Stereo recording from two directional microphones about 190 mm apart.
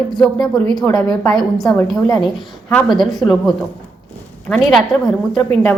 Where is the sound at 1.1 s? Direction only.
Centre (ahead or behind).